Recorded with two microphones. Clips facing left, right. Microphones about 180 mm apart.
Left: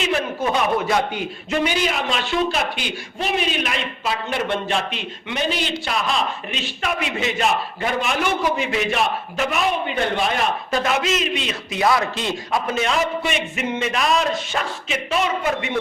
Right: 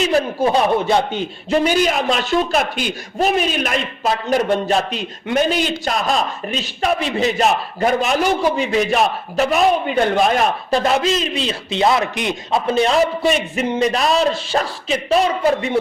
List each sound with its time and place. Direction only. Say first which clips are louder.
0.0 s a man's voice: right 5 dB; 35° right (ahead or behind)